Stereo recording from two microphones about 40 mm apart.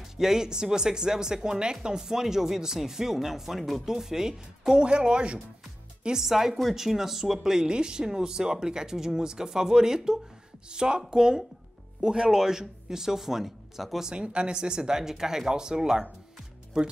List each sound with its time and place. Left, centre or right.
0.2 s speech: centre
6.0 s speech: centre
14.1 s speech: right